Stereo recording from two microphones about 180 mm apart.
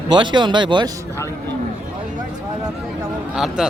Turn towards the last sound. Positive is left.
turn(degrees=-5)  # may be behind; listen again after turning